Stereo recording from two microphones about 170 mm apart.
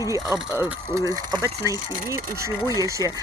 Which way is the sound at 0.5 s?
15° right (ahead or behind).